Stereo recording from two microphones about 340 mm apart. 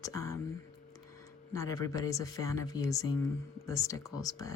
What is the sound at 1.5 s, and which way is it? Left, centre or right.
Speech, centre.